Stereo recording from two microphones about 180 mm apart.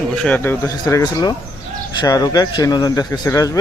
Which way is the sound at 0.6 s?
20° left (ahead or behind).